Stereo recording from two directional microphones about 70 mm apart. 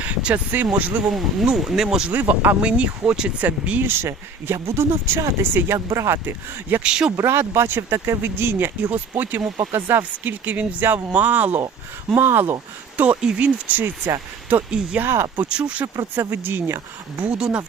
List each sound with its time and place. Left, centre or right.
0.0 s a sound: centre
0.6 s speech: right
1.0 s speech: centre
2.1 s speech: right
6.2 s speech: right
6.8 s speech: centre
7.2 s speech: right
13.0 s speech: centre
15.0 s speech: right
15.4 s speech: centre
16.3 s speech: right
17.2 s speech: centre